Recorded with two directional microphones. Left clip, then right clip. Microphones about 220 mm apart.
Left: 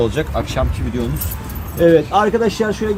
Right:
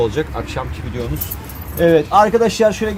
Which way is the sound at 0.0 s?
10° right (ahead or behind).